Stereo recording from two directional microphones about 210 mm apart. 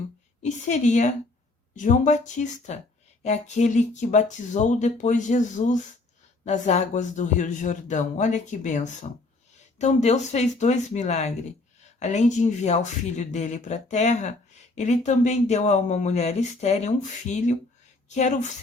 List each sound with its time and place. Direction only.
0.4 s speech: 35° left (ahead or behind)